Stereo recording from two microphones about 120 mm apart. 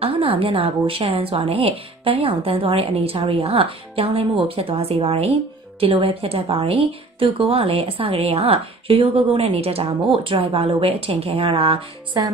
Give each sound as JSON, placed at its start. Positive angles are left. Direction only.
{"t": 0.0, "sound": "speech", "side_deg": -50}